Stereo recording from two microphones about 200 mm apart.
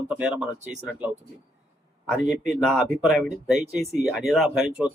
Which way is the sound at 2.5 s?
Centre (ahead or behind).